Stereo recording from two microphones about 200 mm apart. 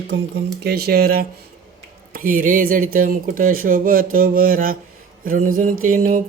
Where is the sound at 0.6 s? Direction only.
50° right (ahead or behind).